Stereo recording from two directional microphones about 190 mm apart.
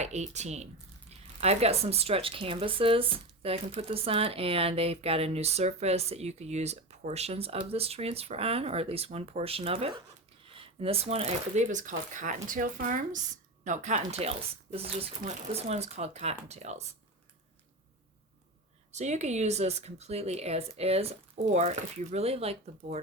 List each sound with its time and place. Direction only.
0.0 s speech: 35° right (ahead or behind)
18.9 s speech: 35° right (ahead or behind)